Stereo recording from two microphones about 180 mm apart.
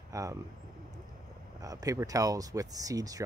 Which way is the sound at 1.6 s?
20° right (ahead or behind).